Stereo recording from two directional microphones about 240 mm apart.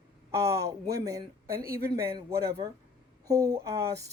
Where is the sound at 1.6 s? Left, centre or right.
Right.